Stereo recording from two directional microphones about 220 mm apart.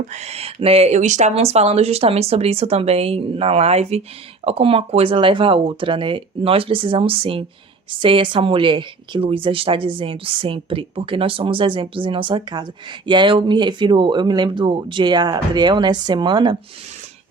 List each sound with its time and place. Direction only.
0.1 s a woman's voice: 30° right (ahead or behind)